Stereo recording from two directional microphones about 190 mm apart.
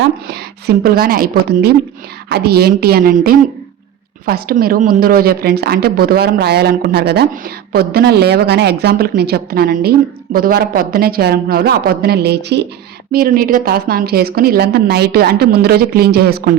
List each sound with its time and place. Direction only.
0.3 s a woman's voice: 55° right (ahead or behind)
13.1 s a woman's voice: 50° right (ahead or behind)